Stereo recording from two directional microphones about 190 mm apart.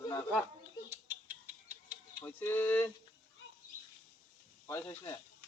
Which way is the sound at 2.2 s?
10° left (ahead or behind).